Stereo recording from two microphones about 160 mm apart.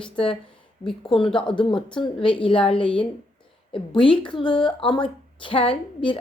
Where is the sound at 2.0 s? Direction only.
35° left (ahead or behind).